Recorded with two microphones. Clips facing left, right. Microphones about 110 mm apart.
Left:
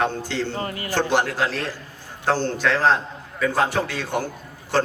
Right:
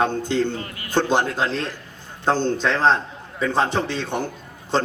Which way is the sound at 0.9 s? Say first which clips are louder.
Right 2 dB; 20° right (ahead or behind).